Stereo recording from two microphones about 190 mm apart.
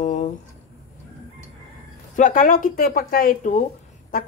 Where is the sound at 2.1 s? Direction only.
45° left (ahead or behind).